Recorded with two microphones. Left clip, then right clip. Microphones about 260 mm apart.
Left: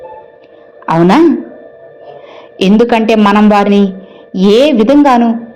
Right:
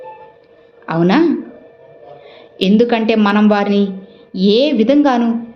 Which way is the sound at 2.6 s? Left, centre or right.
Left.